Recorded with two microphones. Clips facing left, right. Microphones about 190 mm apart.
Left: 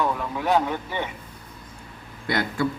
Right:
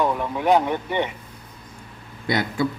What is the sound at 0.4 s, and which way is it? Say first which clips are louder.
Speech: right 4 dB; 15° right (ahead or behind).